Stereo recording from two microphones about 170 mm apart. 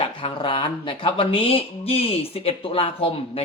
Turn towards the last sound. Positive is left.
turn(degrees=35)  # may be behind; listen again after turning